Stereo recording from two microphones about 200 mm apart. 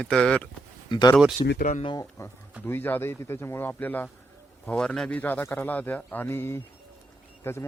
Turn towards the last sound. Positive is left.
turn(degrees=10)  # may be behind; listen again after turning